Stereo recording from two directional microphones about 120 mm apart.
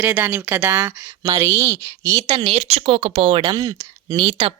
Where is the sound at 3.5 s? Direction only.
30° right (ahead or behind).